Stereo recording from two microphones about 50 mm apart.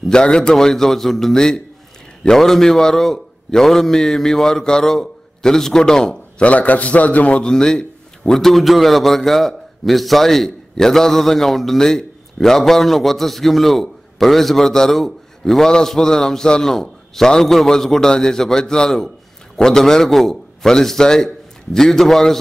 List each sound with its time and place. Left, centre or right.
0.1 s a man's voice: centre
6.4 s a man's voice: left
7.4 s a man's voice: centre